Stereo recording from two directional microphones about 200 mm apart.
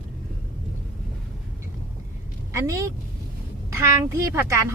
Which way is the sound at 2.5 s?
15° right (ahead or behind).